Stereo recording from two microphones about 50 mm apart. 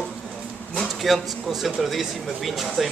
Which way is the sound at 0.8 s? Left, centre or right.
Centre.